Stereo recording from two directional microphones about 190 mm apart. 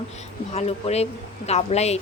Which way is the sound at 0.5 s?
35° left (ahead or behind).